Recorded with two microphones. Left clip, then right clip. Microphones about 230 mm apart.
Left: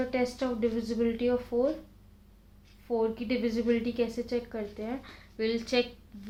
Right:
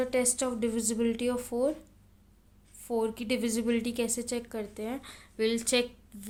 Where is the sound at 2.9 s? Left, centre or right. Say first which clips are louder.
Left 1 dB; right.